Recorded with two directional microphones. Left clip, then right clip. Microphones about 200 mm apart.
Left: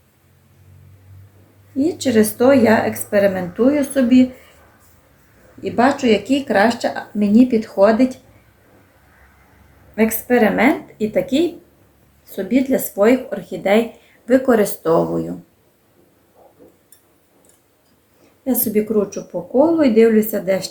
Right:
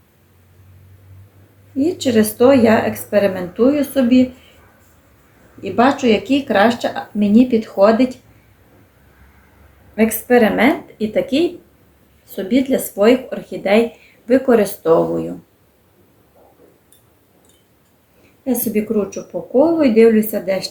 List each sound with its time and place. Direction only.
1.7 s speech: 10° left (ahead or behind)
5.6 s speech: 10° left (ahead or behind)
9.9 s speech: 5° left (ahead or behind)
12.5 s speech: 5° left (ahead or behind)
18.4 s speech: 15° left (ahead or behind)